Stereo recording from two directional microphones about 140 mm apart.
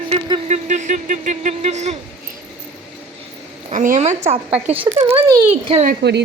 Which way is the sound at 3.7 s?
65° right (ahead or behind).